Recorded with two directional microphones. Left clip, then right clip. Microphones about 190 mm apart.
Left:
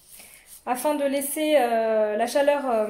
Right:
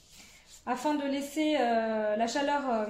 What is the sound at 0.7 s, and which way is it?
A woman's voice, 50° left (ahead or behind).